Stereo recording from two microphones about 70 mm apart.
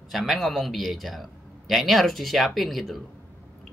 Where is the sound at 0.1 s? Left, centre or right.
Centre.